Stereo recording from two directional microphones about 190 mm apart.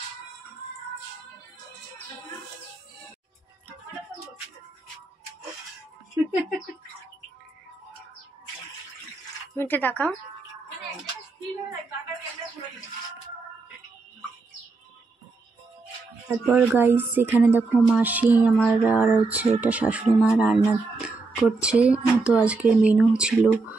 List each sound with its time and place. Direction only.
9.6 s speech: 10° left (ahead or behind)
16.3 s speech: 10° right (ahead or behind)